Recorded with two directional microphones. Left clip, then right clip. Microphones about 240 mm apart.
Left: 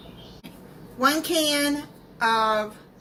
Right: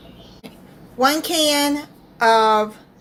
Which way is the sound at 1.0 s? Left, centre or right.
Right.